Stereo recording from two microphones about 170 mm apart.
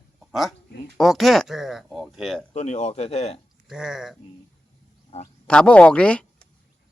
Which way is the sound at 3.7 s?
5° right (ahead or behind).